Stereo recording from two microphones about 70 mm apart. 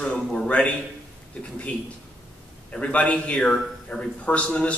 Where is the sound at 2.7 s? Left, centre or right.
Centre.